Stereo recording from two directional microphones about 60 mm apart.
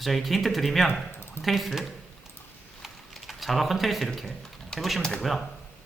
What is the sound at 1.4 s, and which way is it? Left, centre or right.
Speech, centre.